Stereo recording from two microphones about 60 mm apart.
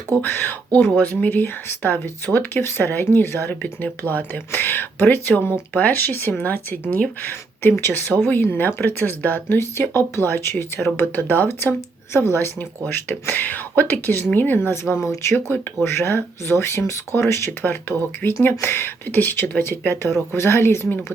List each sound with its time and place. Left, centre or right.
0.2 s speech: left
3.5 s speech: left
15.0 s speech: left
17.6 s speech: left